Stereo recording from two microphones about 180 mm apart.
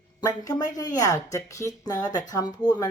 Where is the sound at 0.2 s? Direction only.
20° left (ahead or behind).